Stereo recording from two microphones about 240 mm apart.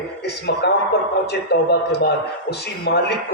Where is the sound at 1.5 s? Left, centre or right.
Left.